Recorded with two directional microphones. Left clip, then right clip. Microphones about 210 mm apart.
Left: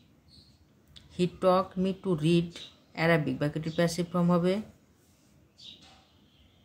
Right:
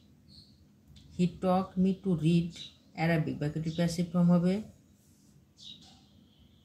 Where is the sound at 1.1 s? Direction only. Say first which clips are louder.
Left 5 dB; 45° left (ahead or behind).